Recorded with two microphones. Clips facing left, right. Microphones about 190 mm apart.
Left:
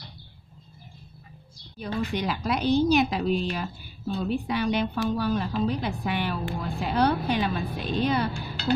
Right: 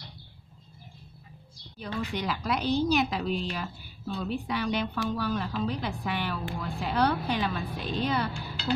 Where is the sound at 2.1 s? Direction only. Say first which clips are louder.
Left 1 dB; 20° left (ahead or behind).